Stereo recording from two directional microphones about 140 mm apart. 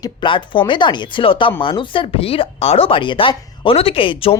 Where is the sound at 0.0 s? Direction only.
35° left (ahead or behind).